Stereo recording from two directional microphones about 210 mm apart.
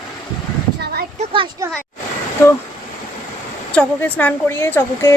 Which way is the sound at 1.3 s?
25° right (ahead or behind).